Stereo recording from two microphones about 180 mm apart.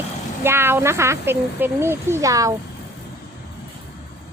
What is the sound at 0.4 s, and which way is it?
A woman's voice, 15° right (ahead or behind).